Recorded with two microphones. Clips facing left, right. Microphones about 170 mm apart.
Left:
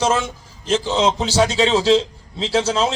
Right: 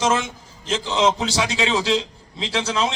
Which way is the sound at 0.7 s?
35° left (ahead or behind).